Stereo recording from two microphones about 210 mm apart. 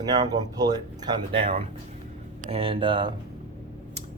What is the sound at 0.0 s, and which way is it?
Speech, 20° right (ahead or behind).